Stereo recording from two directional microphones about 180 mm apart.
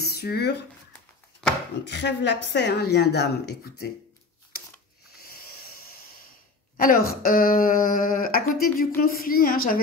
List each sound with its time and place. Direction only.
0.0 s speech: 60° left (ahead or behind)
1.9 s speech: 70° left (ahead or behind)
6.8 s speech: 55° left (ahead or behind)